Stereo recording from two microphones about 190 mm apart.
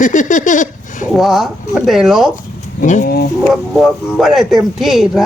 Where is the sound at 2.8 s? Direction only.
45° left (ahead or behind).